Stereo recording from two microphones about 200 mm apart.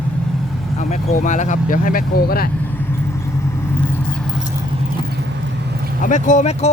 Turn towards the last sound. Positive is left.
turn(degrees=35)  # may be behind; listen again after turning